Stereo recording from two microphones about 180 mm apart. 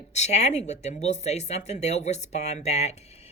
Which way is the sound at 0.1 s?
40° left (ahead or behind).